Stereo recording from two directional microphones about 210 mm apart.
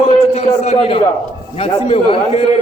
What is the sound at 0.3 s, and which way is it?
A man's voice, 30° left (ahead or behind).